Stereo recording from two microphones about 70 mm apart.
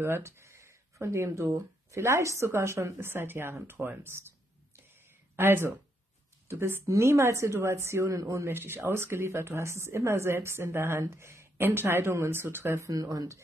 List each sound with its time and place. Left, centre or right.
0.0 s speech: right
5.3 s a woman's voice: right
8.5 s speech: right
12.8 s speech: right